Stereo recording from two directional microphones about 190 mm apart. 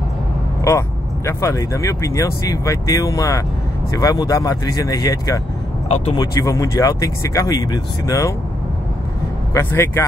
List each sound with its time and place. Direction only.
0.7 s speech: 15° left (ahead or behind)
5.9 s speech: 35° left (ahead or behind)
6.1 s speech: 15° left (ahead or behind)
9.5 s speech: 15° left (ahead or behind)